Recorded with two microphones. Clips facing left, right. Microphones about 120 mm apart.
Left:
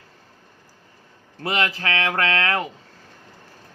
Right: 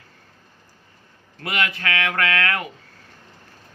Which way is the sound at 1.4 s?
30° left (ahead or behind).